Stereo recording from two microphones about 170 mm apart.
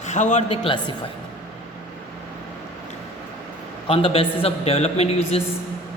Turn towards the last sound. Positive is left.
turn(degrees=35)  # may be behind; listen again after turning